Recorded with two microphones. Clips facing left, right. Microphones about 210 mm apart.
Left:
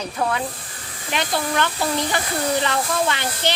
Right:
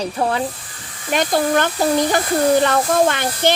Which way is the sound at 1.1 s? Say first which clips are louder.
Right 7 dB; 45° right (ahead or behind).